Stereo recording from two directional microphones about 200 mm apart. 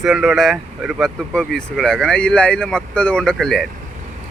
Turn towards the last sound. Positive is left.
turn(degrees=0)  # may be behind; listen again after turning